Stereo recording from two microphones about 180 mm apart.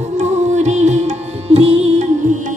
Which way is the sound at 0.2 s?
40° right (ahead or behind).